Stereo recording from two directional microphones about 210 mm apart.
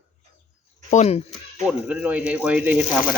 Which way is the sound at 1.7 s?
5° right (ahead or behind).